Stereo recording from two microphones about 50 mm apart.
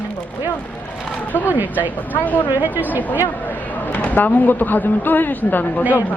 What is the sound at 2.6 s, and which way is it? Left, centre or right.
Speech, right.